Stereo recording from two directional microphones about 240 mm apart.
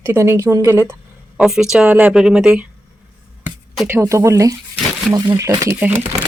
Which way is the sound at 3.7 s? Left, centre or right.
Centre.